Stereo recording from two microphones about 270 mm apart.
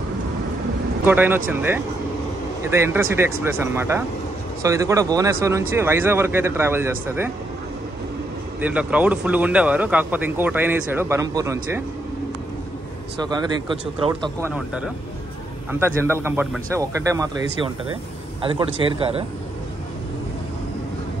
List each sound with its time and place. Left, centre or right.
1.0 s speech: centre
8.5 s speech: centre
13.2 s speech: centre
14.5 s a man's voice: centre